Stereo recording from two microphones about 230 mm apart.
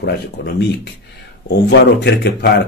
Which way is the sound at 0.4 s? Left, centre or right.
Left.